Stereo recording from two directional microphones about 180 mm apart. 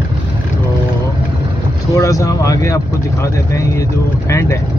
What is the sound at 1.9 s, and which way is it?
Speech, 20° left (ahead or behind).